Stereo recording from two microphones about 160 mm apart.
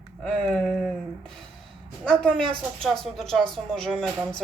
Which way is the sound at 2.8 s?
5° left (ahead or behind).